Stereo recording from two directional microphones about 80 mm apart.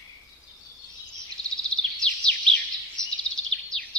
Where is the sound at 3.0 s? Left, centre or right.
Right.